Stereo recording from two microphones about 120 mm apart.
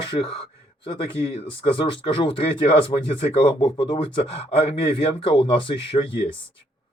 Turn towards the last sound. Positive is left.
turn(degrees=50)  # may be behind; listen again after turning